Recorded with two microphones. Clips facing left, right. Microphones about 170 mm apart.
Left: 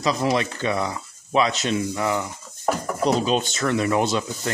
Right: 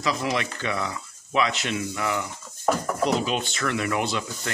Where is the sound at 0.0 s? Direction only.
30° left (ahead or behind).